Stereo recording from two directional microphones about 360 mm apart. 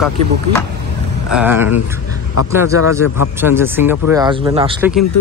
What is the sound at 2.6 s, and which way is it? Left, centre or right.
Speech, left.